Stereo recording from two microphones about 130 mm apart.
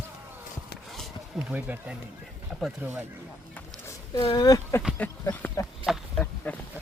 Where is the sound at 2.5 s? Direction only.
Centre (ahead or behind).